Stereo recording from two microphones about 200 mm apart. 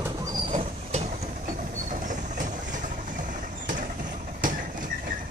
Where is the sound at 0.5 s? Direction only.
35° right (ahead or behind).